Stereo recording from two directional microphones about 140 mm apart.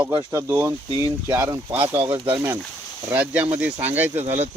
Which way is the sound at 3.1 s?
10° right (ahead or behind).